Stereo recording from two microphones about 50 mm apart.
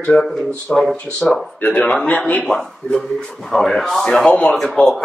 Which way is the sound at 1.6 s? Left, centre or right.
Left.